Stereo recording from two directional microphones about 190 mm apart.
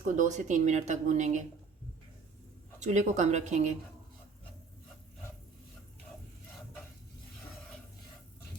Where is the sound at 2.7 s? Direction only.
40° right (ahead or behind).